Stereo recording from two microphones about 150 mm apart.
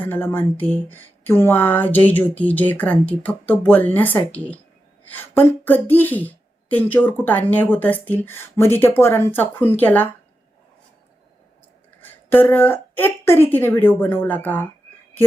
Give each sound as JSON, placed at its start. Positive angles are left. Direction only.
{"t": 0.0, "sound": "a woman's voice", "side_deg": 15}
{"t": 11.9, "sound": "a woman's voice", "side_deg": 15}